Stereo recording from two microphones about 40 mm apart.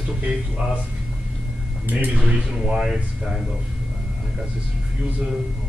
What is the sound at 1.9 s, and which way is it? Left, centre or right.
Speech, right.